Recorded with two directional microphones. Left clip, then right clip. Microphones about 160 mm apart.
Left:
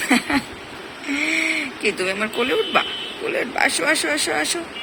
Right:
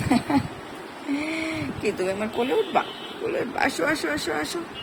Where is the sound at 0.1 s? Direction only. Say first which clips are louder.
Left 3 dB; centre (ahead or behind).